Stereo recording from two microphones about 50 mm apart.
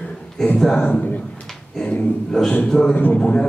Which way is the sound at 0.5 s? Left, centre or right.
Centre.